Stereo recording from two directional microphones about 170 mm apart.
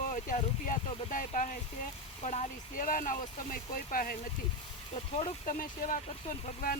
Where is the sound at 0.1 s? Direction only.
45° left (ahead or behind).